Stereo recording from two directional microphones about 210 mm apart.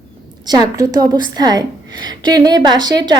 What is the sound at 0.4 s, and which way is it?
A woman's voice, 20° right (ahead or behind).